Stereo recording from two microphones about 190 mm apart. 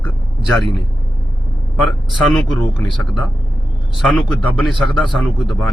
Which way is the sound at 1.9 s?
Centre (ahead or behind).